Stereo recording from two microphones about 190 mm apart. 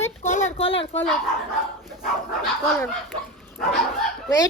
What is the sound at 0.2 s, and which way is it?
Speech, 35° left (ahead or behind).